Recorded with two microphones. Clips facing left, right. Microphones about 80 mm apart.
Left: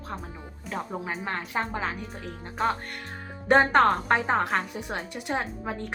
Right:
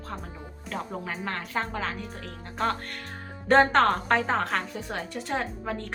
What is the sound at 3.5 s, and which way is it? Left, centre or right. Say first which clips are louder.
A woman's voice: even; centre.